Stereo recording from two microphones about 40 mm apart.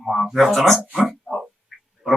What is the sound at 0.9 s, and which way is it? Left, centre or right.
Speech, right.